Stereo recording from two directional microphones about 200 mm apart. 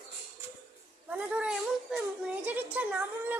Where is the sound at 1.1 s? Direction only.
5° right (ahead or behind).